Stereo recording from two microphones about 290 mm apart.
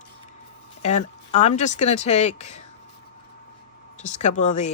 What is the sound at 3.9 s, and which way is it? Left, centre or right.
Speech, left.